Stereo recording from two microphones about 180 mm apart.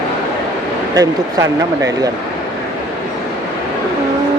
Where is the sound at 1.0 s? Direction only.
20° right (ahead or behind).